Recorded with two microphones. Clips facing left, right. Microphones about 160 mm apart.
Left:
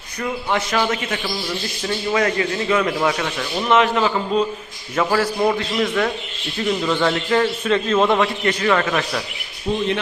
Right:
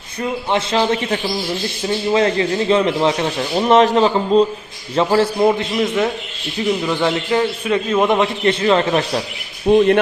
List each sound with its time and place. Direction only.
0.2 s a man's voice: 25° right (ahead or behind)
9.6 s speech: 55° right (ahead or behind)